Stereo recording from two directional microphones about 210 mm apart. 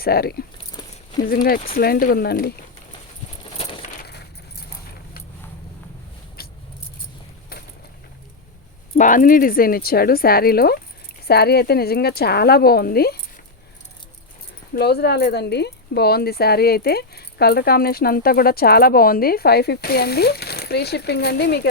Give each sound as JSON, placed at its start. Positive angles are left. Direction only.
{"t": 0.0, "sound": "speech", "side_deg": 45}
{"t": 0.8, "sound": "a sound", "side_deg": 20}
{"t": 1.2, "sound": "speech", "side_deg": 45}
{"t": 4.0, "sound": "keys jangling", "side_deg": 50}
{"t": 7.5, "sound": "mechanisms", "side_deg": 45}
{"t": 9.0, "sound": "speech", "side_deg": 40}
{"t": 14.7, "sound": "speech", "side_deg": 50}